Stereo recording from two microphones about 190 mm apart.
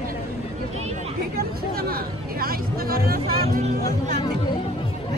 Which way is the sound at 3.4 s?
35° right (ahead or behind).